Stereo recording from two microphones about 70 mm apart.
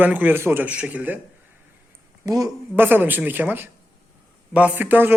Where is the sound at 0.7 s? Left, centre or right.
Centre.